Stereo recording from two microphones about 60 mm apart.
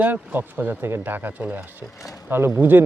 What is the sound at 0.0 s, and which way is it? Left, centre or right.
Speech, right.